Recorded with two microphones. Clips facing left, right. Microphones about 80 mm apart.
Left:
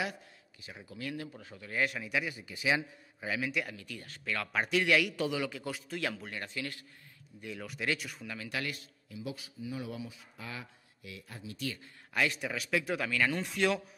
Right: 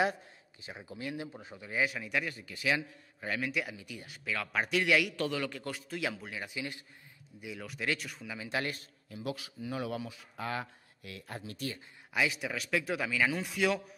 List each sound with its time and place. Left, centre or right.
0.6 s speech: right
1.8 s speech: centre
3.2 s a man's voice: centre
3.7 s a man's voice: centre
8.4 s speech: right
9.2 s speech: right
12.1 s a man's voice: centre